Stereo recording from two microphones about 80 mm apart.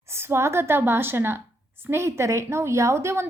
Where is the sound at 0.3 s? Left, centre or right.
Right.